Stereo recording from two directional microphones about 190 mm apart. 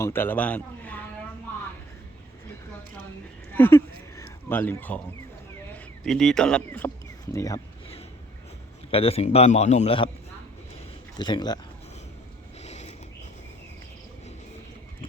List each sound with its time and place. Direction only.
0.0 s a man's voice: 10° left (ahead or behind)
3.5 s a sound: 10° left (ahead or behind)
5.7 s speech: centre (ahead or behind)
7.3 s speech: 15° left (ahead or behind)
8.9 s a man's voice: 30° left (ahead or behind)
11.2 s speech: 20° left (ahead or behind)
12.6 s mechanisms: 35° left (ahead or behind)